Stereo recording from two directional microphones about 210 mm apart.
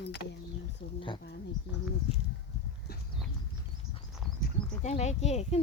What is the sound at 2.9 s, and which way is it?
Clip-clop, 45° left (ahead or behind).